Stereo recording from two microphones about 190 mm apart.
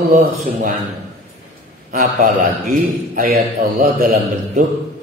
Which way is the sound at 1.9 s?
50° right (ahead or behind).